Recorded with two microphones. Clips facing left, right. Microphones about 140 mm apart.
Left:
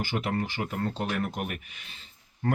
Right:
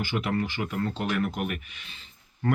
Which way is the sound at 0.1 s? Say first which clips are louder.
Right 2 dB; 40° left (ahead or behind).